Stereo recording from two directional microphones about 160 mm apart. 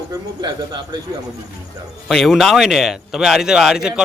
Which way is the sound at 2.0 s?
Centre (ahead or behind).